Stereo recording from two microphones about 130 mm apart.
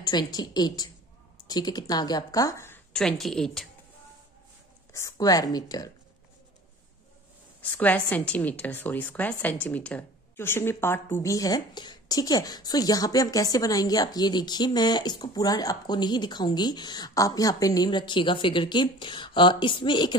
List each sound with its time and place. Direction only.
0.0 s a woman's voice: 30° left (ahead or behind)
2.9 s a woman's voice: 5° left (ahead or behind)
4.9 s speech: 25° left (ahead or behind)
7.7 s a woman's voice: 10° left (ahead or behind); by 20.2 s 40° left (ahead or behind)